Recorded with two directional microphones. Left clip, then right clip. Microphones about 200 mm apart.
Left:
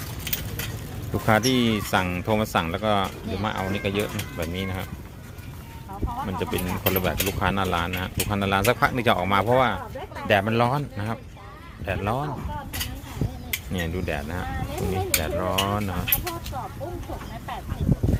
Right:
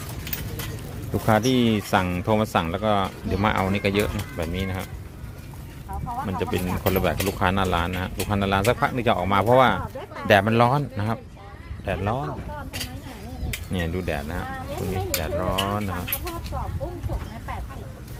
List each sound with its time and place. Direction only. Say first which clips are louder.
1.3 s speech: even; 15° right (ahead or behind)
3.2 s speech: right 5 dB; 25° right (ahead or behind)
6.2 s speech: right 1 dB; 15° right (ahead or behind)
9.3 s speech: right 6 dB; 15° right (ahead or behind)
11.9 s dishes: even; 5° right (ahead or behind)
13.7 s speech: right 2 dB; 10° right (ahead or behind)
15.2 s dishes: right 2 dB; centre (ahead or behind)